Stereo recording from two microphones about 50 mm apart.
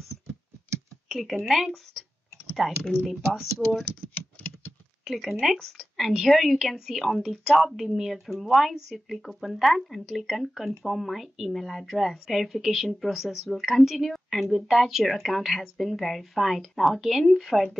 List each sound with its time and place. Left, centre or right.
1.0 s speech: centre
3.5 s speech: centre
4.1 s patter: left
5.0 s speech: centre